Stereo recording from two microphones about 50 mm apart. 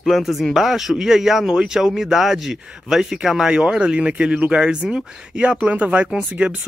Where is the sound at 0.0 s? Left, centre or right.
Centre.